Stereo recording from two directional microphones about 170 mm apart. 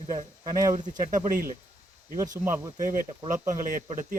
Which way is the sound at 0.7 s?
50° right (ahead or behind).